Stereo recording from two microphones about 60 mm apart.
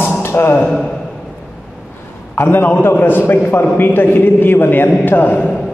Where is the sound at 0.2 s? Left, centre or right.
Left.